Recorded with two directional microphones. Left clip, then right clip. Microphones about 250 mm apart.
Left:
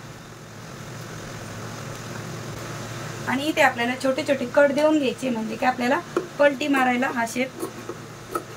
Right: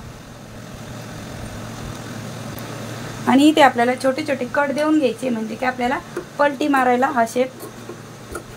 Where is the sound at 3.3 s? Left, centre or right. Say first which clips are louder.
Right 7 dB; centre.